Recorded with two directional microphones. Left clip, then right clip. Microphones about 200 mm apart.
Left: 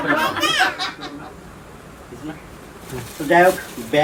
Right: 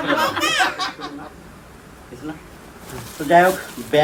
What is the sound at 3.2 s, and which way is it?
Speech, centre (ahead or behind).